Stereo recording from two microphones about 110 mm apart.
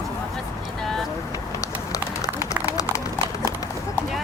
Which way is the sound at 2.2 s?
30° left (ahead or behind).